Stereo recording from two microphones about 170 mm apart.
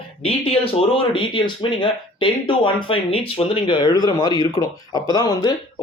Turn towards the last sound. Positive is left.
turn(degrees=25)  # may be behind; listen again after turning